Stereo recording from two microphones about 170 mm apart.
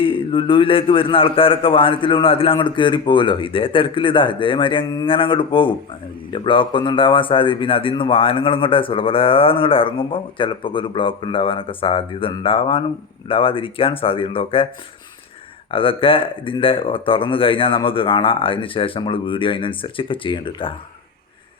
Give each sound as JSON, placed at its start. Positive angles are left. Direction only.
{"t": 0.0, "sound": "a man's voice", "side_deg": 30}
{"t": 15.7, "sound": "a man's voice", "side_deg": 30}